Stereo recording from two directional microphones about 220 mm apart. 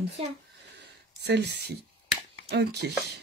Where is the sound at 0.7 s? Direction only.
50° right (ahead or behind).